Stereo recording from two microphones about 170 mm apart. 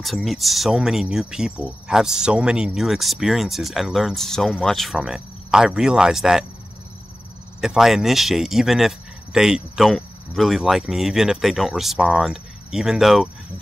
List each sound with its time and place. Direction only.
0.0 s speech: centre (ahead or behind)
7.6 s speech: centre (ahead or behind)